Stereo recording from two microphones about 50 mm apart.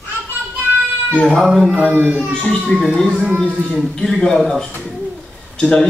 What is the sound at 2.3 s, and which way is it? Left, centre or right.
Speech, centre.